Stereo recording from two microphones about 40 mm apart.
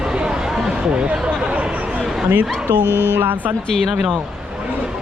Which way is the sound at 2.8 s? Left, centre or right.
Left.